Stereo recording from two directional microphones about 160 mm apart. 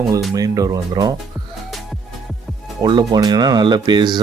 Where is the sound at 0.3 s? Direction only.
20° right (ahead or behind).